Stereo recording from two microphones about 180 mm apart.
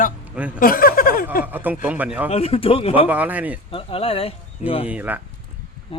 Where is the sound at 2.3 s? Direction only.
35° left (ahead or behind).